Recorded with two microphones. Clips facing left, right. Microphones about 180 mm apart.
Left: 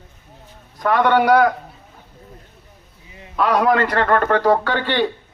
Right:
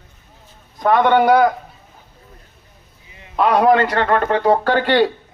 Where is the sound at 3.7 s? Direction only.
25° right (ahead or behind).